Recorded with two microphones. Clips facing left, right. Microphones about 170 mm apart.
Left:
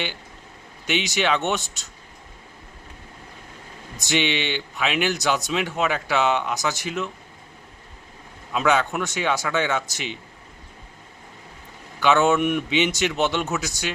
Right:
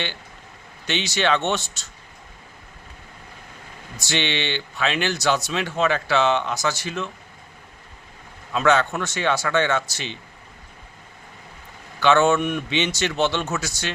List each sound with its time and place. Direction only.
0.9 s speech: 15° left (ahead or behind)
3.9 s speech: 15° left (ahead or behind)
8.5 s speech: 15° left (ahead or behind)
11.9 s speech: 15° left (ahead or behind)